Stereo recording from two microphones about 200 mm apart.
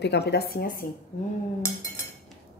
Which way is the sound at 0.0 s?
55° left (ahead or behind).